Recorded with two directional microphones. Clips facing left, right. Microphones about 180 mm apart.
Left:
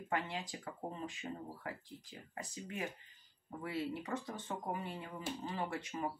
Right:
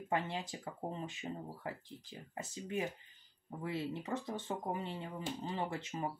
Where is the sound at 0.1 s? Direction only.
25° right (ahead or behind).